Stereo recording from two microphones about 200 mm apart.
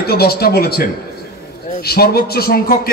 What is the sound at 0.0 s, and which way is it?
Speech, 50° left (ahead or behind).